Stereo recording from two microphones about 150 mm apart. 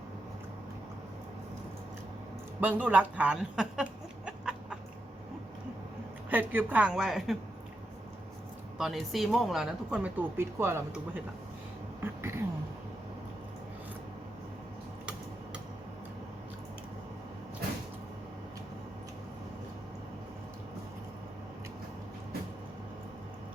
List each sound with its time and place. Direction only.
2.6 s a woman's voice: 10° right (ahead or behind)
4.3 s chicken: 5° right (ahead or behind)
6.3 s a woman's voice: 10° right (ahead or behind)
8.8 s speech: centre (ahead or behind)
12.0 s a sound: 15° right (ahead or behind)